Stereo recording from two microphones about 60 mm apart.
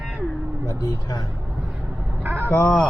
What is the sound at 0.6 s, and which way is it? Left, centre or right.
Speech, left.